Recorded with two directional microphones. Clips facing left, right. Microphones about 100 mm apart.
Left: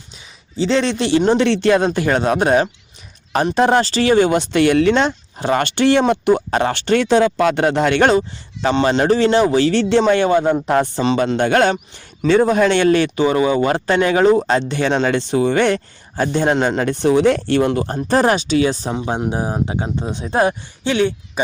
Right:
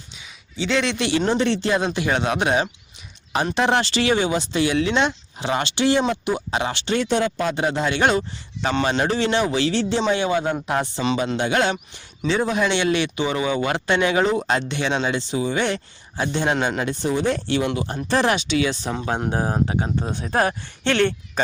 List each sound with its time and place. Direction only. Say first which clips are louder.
0.5 s speech: left 5 dB; 35° left (ahead or behind)
1.4 s speech: left 6 dB; 75° left (ahead or behind)
1.8 s speech: left 5 dB; 45° left (ahead or behind)
5.0 s speech: left 5 dB; 45° left (ahead or behind)
7.0 s speech: left 7 dB; 85° left; by 8.0 s 65° left (ahead or behind)
8.6 s speech: left 6 dB; 35° left (ahead or behind)
9.7 s speech: left 7 dB; 70° left (ahead or behind)
10.0 s speech: left 7 dB; 50° left (ahead or behind)
16.8 s speech: left 8 dB; 65° left (ahead or behind)
17.7 s speech: left 5 dB; 40° left (ahead or behind)
18.9 s speech: left 3 dB; 25° left (ahead or behind)
20.8 s speech: left 2 dB; 10° left (ahead or behind)